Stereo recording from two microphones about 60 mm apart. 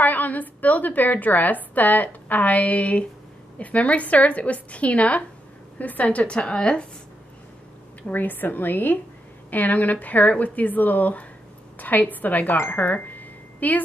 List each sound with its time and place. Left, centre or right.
0.0 s a woman's voice: left
8.1 s a woman's voice: left
12.5 s wind chime: left